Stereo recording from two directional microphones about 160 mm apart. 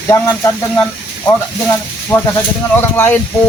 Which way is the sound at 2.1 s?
20° left (ahead or behind).